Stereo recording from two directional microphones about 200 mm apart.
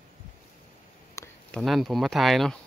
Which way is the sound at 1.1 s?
15° left (ahead or behind).